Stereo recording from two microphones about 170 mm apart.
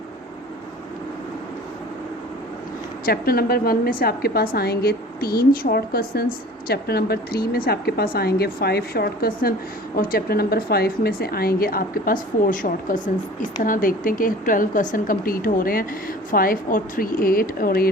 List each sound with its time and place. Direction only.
3.1 s a woman's voice: 60° left (ahead or behind)